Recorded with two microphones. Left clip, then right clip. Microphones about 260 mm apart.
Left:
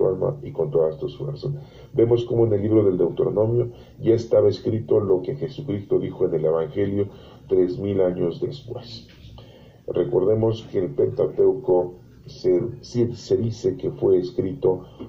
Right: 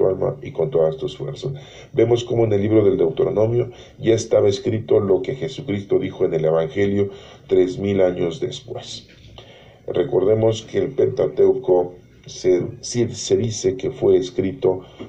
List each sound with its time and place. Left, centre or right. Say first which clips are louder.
0.0 s speech: right 2 dB; right
9.8 s speech: right 3 dB; right
13.1 s speech: right 3 dB; centre
13.6 s speech: right 3 dB; right